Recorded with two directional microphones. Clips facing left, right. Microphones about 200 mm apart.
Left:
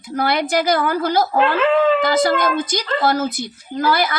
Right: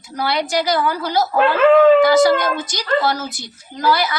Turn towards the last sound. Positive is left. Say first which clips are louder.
# even
turn(degrees=50)  # may be behind; listen again after turning